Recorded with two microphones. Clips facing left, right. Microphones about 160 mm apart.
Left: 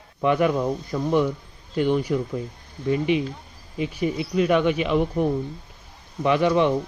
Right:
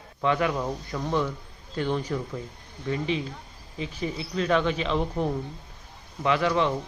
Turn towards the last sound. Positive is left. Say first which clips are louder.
# left 4 dB
turn(degrees=20)  # may be behind; listen again after turning